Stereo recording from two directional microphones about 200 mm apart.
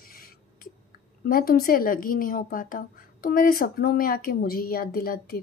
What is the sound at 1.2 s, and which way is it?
A woman's voice, 45° left (ahead or behind).